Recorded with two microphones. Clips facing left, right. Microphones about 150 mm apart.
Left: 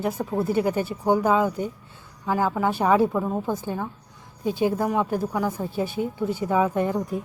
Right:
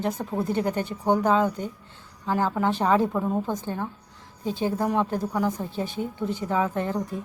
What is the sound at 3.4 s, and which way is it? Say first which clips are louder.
A woman's voice: left 2 dB; 10° left (ahead or behind).